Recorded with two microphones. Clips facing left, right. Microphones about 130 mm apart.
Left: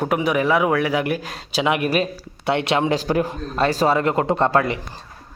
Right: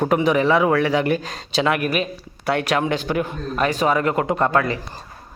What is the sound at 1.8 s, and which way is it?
Speech, 35° left (ahead or behind).